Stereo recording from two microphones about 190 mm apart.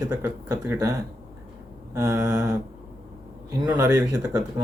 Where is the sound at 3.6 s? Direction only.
20° right (ahead or behind).